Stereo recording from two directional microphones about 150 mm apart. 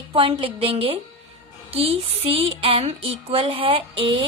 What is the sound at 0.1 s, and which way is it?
A woman's voice, 35° right (ahead or behind).